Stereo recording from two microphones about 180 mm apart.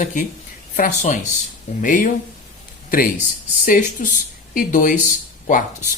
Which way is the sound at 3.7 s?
45° left (ahead or behind).